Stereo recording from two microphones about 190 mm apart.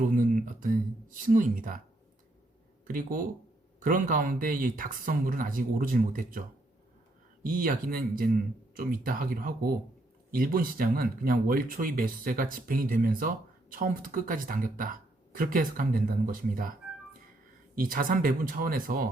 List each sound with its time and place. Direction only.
0.0 s speech: 45° right (ahead or behind)
2.8 s speech: 45° right (ahead or behind)
7.4 s speech: 45° right (ahead or behind)
17.7 s speech: 50° right (ahead or behind)